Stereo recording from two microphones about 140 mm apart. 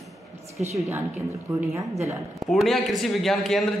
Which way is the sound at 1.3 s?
20° right (ahead or behind).